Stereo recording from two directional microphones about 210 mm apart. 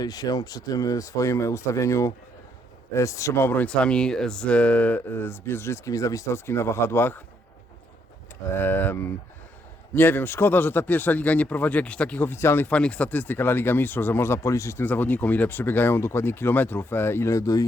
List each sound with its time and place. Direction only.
0.0 s speech: 20° left (ahead or behind)
8.5 s speech: 10° left (ahead or behind)